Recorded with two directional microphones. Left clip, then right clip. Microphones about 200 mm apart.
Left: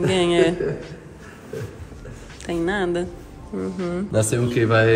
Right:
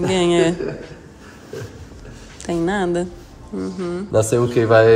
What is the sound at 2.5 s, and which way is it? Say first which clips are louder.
Speech: right 3 dB; 25° right (ahead or behind).